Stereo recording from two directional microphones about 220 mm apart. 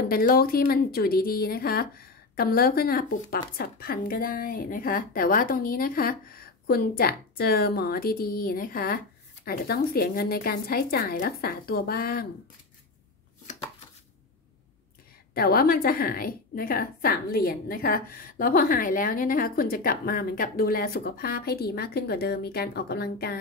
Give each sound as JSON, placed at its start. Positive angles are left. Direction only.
{"t": 0.1, "sound": "speech", "side_deg": 40}
{"t": 15.3, "sound": "speech", "side_deg": 45}